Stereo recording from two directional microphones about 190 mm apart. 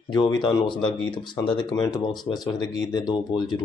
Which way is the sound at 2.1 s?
Centre (ahead or behind).